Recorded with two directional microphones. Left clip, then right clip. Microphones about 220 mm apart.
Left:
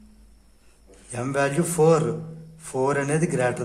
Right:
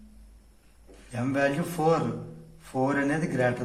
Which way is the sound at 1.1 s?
45° left (ahead or behind).